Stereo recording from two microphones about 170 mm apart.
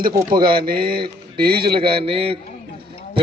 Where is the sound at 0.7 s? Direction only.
65° right (ahead or behind).